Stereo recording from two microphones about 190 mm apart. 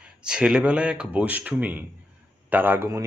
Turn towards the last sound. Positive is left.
turn(degrees=-15)  # may be behind; listen again after turning